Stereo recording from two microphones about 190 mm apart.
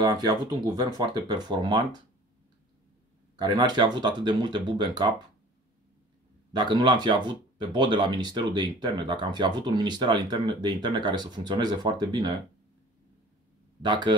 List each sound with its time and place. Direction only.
0.0 s speech: 20° right (ahead or behind)
3.3 s speech: 20° right (ahead or behind)
6.5 s speech: 25° right (ahead or behind)
13.8 s speech: 25° right (ahead or behind)